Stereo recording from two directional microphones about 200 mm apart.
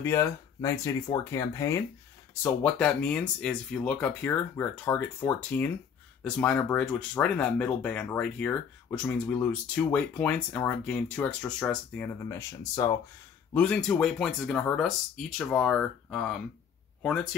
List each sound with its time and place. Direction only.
0.0 s speech: 15° left (ahead or behind)